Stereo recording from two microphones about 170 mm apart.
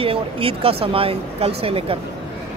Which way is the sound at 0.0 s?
35° right (ahead or behind).